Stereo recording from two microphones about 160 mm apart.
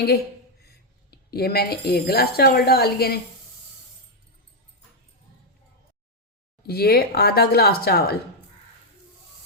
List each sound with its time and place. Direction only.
1.1 s speech: 80° left
6.7 s speech: 75° left (ahead or behind)